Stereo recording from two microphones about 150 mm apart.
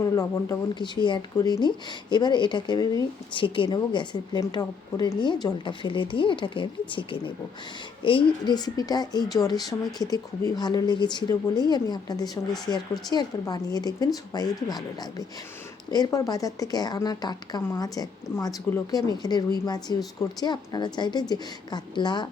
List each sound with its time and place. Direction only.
0.2 s a woman's voice: 25° left (ahead or behind)
15.9 s a woman's voice: 25° left (ahead or behind)